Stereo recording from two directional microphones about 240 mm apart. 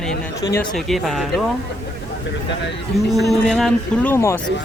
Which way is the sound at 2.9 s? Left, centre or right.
Centre.